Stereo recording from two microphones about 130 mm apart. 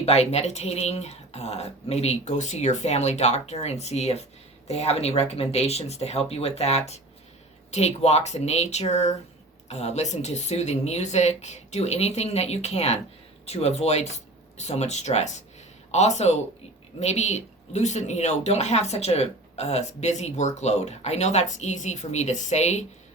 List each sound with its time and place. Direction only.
0.0 s speech: 55° left (ahead or behind)